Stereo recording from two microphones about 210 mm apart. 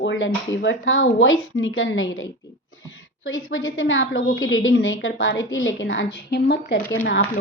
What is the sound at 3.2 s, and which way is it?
A woman's voice, 70° left (ahead or behind).